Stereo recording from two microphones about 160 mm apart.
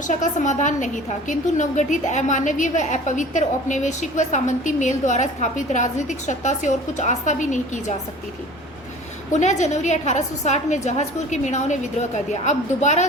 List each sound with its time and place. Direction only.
0.1 s a woman's voice: 50° left (ahead or behind)
9.3 s a woman's voice: 45° left (ahead or behind)